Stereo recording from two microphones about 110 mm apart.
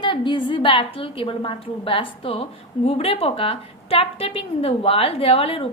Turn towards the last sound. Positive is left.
turn(degrees=60)  # may be behind; listen again after turning